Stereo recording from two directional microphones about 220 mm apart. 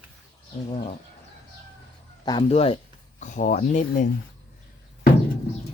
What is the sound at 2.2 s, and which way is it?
Speech, 25° left (ahead or behind).